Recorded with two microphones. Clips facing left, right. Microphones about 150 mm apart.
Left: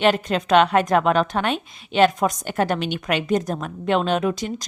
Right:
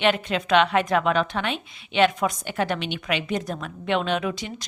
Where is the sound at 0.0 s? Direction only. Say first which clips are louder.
Left 3 dB; 40° left (ahead or behind).